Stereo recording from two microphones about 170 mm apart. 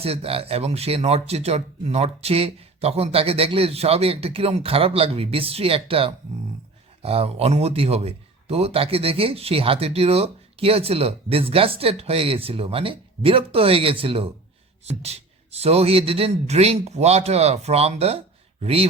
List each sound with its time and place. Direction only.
0.0 s a man's voice: 35° right (ahead or behind)